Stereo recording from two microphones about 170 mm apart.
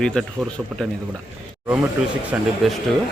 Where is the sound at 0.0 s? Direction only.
5° left (ahead or behind).